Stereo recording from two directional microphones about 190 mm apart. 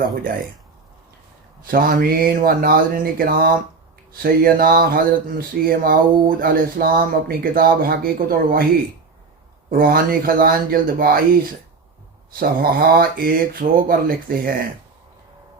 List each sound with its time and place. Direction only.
1.6 s speech: 50° right (ahead or behind)
9.6 s speech: 50° right (ahead or behind)
12.3 s speech: 50° right (ahead or behind)